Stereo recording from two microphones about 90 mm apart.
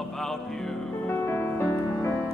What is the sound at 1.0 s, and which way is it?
Music, 20° left (ahead or behind).